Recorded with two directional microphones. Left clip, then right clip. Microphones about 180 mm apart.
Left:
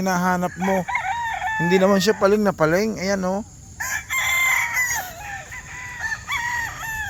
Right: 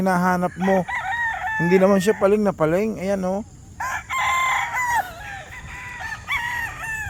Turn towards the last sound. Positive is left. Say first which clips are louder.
# even
turn(degrees=-75)  # may be behind; listen again after turning